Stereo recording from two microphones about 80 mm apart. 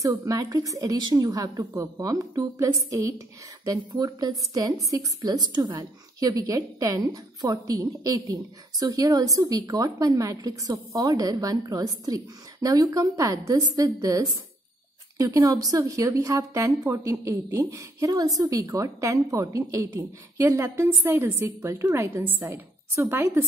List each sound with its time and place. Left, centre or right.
0.2 s speech: right
1.7 s a woman's voice: right